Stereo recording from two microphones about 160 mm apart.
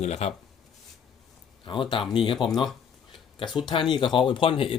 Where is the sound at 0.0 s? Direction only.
45° left (ahead or behind).